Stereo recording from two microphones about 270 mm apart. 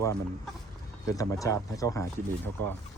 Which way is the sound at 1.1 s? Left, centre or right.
Centre.